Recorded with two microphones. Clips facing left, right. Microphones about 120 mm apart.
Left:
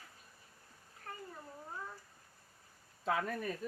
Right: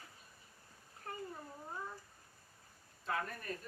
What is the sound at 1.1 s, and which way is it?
Speech, 20° right (ahead or behind).